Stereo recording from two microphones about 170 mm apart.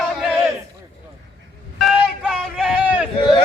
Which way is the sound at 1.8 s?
Centre (ahead or behind).